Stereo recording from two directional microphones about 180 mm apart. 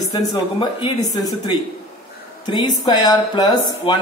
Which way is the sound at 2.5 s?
20° left (ahead or behind).